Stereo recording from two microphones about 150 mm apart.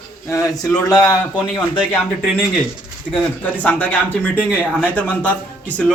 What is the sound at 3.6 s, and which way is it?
A man's voice, 10° left (ahead or behind).